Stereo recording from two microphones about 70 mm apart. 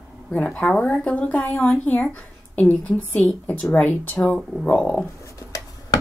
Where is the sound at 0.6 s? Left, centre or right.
Centre.